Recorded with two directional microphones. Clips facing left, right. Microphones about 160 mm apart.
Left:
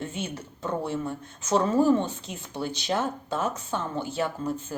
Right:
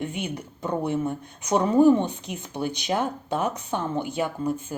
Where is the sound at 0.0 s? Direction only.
15° right (ahead or behind).